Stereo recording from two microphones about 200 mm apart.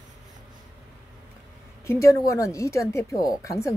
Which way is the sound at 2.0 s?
15° left (ahead or behind).